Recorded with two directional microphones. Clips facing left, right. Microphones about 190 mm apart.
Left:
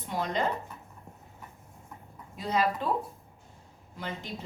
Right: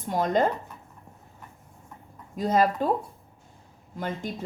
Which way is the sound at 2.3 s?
45° right (ahead or behind).